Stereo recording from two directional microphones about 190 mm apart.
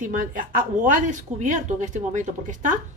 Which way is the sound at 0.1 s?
45° right (ahead or behind).